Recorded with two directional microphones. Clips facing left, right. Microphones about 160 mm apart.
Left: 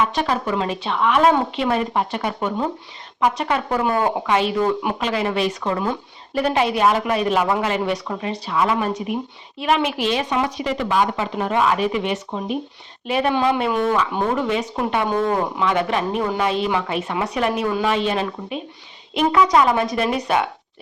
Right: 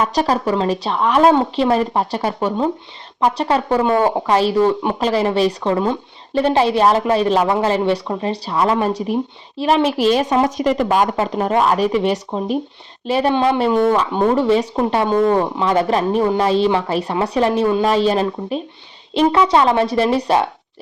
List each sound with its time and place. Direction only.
0.0 s speech: 40° right (ahead or behind)